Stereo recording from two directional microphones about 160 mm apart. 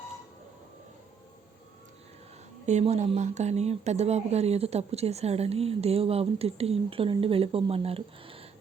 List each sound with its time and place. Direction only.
2.6 s speech: 45° right (ahead or behind)